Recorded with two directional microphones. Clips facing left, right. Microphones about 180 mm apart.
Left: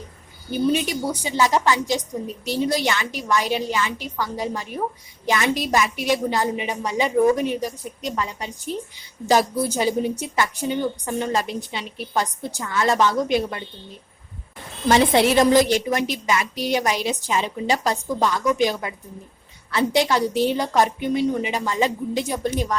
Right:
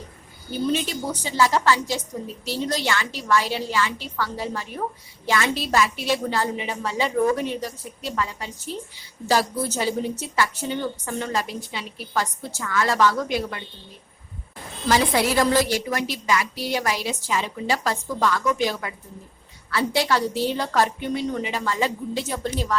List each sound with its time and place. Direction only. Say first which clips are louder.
0.5 s a woman's voice: left 3 dB; 15° left (ahead or behind)
14.8 s a woman's voice: left 4 dB; 25° left (ahead or behind)